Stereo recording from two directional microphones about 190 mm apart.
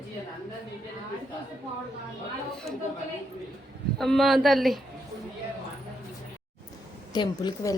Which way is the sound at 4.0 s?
Centre (ahead or behind).